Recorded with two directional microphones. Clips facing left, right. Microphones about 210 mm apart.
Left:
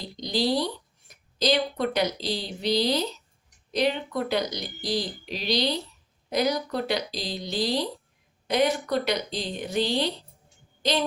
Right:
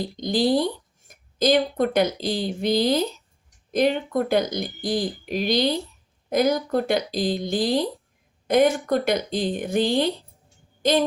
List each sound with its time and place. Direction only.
0.2 s speech: 50° right (ahead or behind)